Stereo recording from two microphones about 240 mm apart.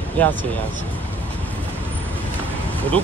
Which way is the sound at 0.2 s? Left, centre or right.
Centre.